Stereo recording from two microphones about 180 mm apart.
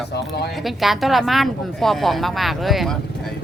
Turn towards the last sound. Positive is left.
turn(degrees=0)  # may be behind; listen again after turning